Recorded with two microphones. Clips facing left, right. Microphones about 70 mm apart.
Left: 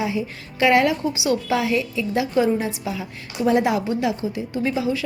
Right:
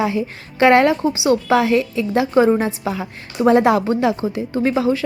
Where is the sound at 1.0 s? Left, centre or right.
Right.